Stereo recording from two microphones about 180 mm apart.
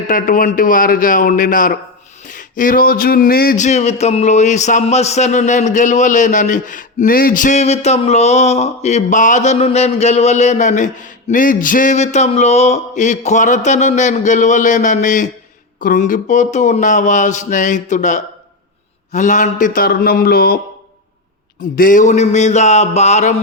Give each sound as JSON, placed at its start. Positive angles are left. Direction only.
{"t": 0.1, "sound": "speech", "side_deg": 45}
{"t": 21.6, "sound": "speech", "side_deg": 50}